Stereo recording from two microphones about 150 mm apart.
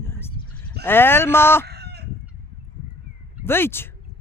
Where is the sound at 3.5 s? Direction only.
15° left (ahead or behind).